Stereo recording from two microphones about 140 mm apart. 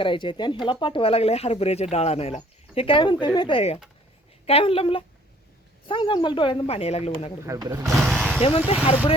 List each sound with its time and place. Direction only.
0.0 s a woman's voice: 35° left (ahead or behind)
7.4 s speech: 20° right (ahead or behind)
8.1 s vehicle: 5° left (ahead or behind)
8.4 s a woman's voice: 45° left (ahead or behind)